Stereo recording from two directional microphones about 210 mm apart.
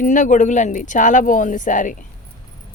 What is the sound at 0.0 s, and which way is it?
Speech, 40° left (ahead or behind).